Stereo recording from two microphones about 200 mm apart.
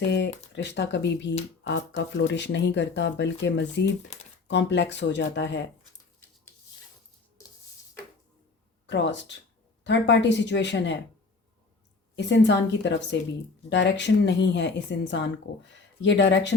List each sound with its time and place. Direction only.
0.0 s speech: 60° left (ahead or behind)
4.1 s a sound: 35° left (ahead or behind)
4.4 s speech: 60° left (ahead or behind)
8.9 s speech: 60° left (ahead or behind)
12.1 s speech: 60° left (ahead or behind)